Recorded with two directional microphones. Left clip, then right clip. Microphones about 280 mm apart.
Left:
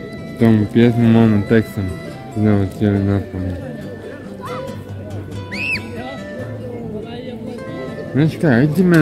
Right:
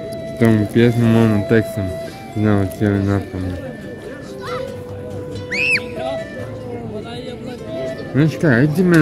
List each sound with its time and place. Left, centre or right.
0.4 s speech: centre
5.5 s music: centre
8.1 s speech: centre